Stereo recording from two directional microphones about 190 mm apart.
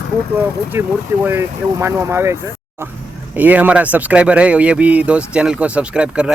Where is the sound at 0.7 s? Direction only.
10° right (ahead or behind).